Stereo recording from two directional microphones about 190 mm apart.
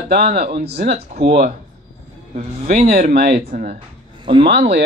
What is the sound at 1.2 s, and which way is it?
Speech, 45° right (ahead or behind).